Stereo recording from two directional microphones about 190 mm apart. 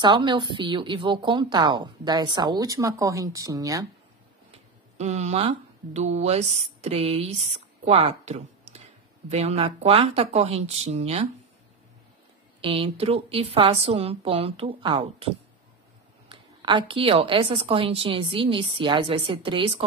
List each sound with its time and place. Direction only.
0.0 s a woman's voice: 25° right (ahead or behind)
4.9 s a woman's voice: 35° right (ahead or behind)
12.6 s a woman's voice: 25° right (ahead or behind)